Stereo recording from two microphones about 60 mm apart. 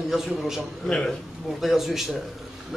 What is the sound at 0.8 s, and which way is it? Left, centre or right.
Speech, centre.